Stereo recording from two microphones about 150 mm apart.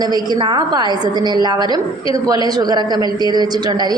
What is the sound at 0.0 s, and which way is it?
A woman's voice, 25° right (ahead or behind).